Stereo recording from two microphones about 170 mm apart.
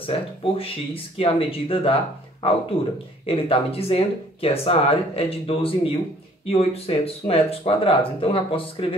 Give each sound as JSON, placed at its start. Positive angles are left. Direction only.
{"t": 0.0, "sound": "speech", "side_deg": 30}